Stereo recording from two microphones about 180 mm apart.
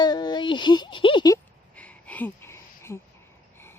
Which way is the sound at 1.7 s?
5° left (ahead or behind).